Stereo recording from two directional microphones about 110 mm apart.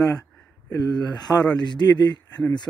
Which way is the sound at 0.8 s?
40° left (ahead or behind).